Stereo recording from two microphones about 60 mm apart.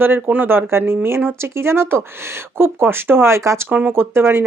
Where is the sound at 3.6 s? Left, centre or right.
Right.